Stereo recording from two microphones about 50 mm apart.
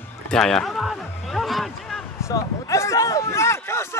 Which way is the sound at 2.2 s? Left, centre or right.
Left.